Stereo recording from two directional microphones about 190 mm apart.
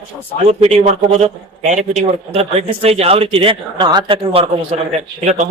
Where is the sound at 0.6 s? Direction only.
35° right (ahead or behind).